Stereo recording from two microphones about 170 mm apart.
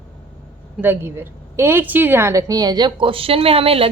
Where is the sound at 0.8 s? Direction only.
10° right (ahead or behind).